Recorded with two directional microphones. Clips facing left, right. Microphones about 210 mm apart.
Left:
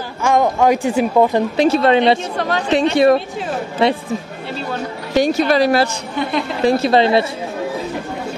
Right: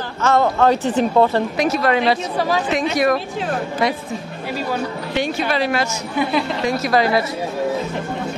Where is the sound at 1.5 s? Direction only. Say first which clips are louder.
Left 7 dB; 30° left (ahead or behind).